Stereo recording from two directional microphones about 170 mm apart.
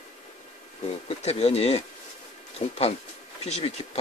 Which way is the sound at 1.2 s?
40° left (ahead or behind).